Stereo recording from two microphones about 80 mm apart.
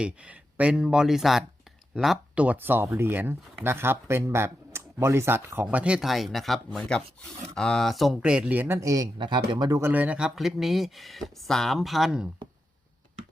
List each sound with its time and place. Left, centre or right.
0.0 s speech: centre
2.3 s speech: centre
5.6 s speech: centre
6.1 s speech: centre
8.2 s speech: centre
8.8 s speech: right
9.1 s speech: right
9.8 s speech: right
10.2 s speech: centre